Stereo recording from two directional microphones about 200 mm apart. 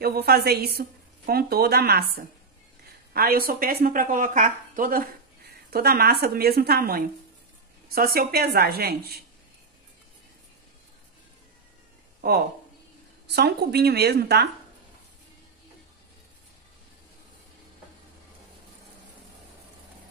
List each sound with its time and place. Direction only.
0.0 s a woman's voice: 50° right (ahead or behind)
3.1 s a woman's voice: 50° right (ahead or behind)
12.2 s a woman's voice: 50° right (ahead or behind)